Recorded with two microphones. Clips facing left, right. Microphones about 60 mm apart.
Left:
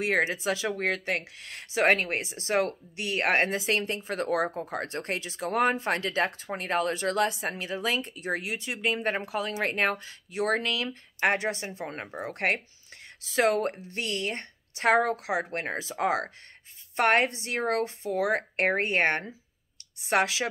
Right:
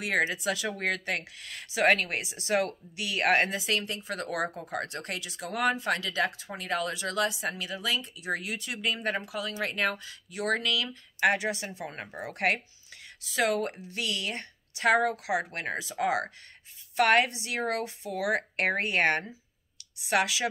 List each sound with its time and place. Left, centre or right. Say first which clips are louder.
0.0 s speech: left 2 dB; left
8.4 s speech: left 2 dB; left